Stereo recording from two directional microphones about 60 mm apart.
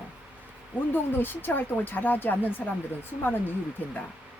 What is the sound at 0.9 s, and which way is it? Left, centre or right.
Speech, left.